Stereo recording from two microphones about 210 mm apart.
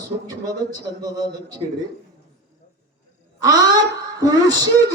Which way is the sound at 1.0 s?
15° right (ahead or behind).